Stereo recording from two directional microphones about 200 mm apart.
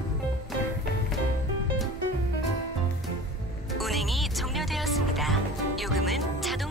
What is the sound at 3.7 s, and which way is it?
Music, centre (ahead or behind).